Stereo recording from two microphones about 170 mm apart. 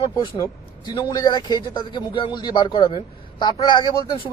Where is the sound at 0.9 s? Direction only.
25° left (ahead or behind).